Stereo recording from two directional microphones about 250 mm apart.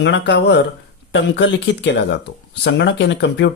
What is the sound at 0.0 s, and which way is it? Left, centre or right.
Speech, left.